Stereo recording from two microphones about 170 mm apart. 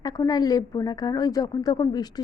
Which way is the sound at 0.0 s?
20° left (ahead or behind).